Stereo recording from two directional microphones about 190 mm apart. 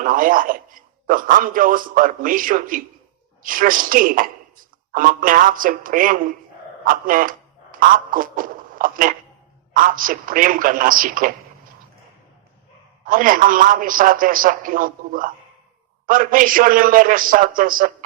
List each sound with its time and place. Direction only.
0.0 s a man's voice: 45° right (ahead or behind)
13.1 s a man's voice: 45° right (ahead or behind)